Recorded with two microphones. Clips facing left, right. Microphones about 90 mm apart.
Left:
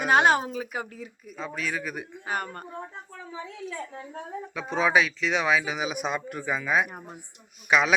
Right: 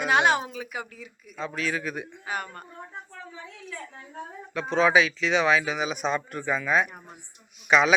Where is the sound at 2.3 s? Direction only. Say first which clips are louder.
Left 3 dB; 40° left (ahead or behind).